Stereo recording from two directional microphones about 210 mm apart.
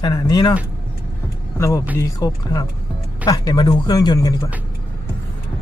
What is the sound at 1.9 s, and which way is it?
Speech, 15° left (ahead or behind).